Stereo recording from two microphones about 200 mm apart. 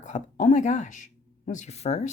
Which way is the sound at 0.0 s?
35° left (ahead or behind).